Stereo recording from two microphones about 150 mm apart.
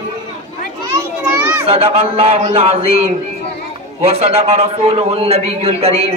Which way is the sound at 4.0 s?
45° right (ahead or behind).